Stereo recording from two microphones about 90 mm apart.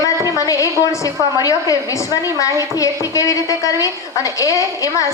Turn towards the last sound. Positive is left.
turn(degrees=40)  # may be behind; listen again after turning